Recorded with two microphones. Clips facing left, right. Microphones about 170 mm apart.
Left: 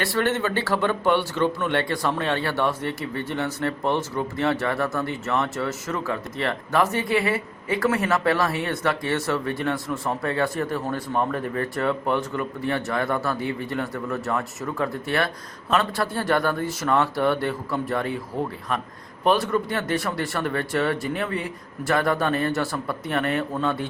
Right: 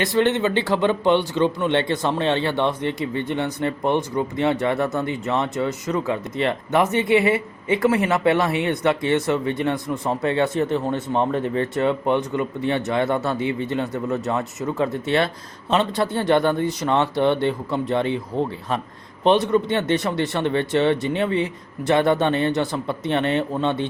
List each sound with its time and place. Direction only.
0.0 s speech: 20° right (ahead or behind)